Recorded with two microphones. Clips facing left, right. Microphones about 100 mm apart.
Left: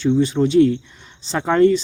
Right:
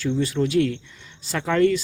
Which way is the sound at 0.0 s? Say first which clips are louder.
Left 6 dB; 20° left (ahead or behind).